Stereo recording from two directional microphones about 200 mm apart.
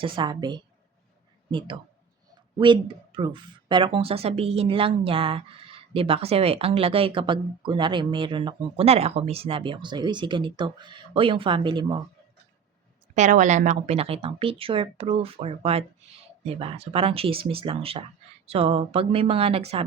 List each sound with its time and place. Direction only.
0.0 s speech: 20° right (ahead or behind)
13.1 s speech: 40° right (ahead or behind)